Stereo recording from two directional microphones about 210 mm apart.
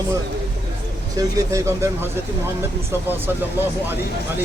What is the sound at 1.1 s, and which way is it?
Speech, 15° right (ahead or behind).